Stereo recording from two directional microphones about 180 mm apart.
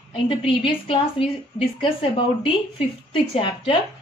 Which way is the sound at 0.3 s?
30° left (ahead or behind).